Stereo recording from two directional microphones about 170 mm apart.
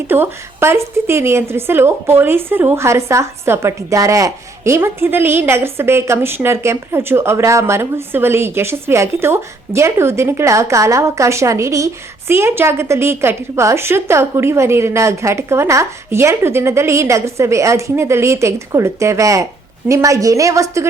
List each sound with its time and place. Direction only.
0.1 s a woman's voice: 15° right (ahead or behind)